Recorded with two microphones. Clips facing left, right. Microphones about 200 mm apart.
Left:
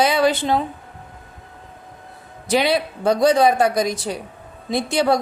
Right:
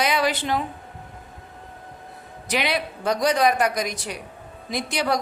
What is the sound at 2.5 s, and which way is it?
Speech, 30° left (ahead or behind).